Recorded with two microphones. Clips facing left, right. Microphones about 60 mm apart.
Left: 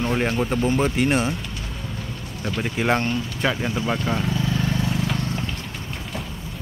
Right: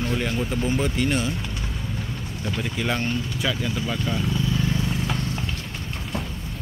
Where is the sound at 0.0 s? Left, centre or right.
Left.